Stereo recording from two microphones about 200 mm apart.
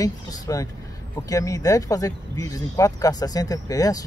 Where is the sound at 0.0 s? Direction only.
15° left (ahead or behind).